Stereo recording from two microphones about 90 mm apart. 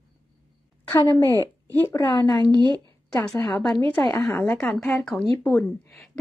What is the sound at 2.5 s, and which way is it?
Speech, 55° right (ahead or behind).